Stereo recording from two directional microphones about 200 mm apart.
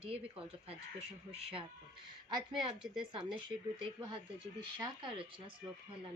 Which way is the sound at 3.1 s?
25° right (ahead or behind).